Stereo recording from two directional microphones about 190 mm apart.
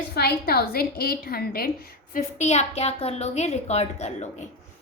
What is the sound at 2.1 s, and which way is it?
A woman's voice, 35° left (ahead or behind).